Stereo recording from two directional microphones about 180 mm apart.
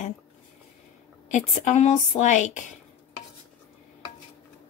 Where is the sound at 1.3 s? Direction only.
40° left (ahead or behind).